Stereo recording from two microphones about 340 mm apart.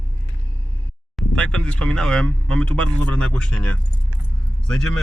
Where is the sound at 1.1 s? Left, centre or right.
Centre.